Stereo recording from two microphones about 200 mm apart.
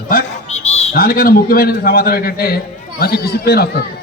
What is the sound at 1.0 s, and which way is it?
A man's voice, 45° left (ahead or behind).